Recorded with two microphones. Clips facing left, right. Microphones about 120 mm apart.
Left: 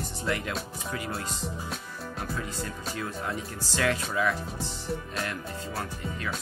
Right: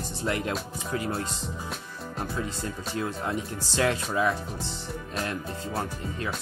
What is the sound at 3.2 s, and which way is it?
Music, 25° right (ahead or behind).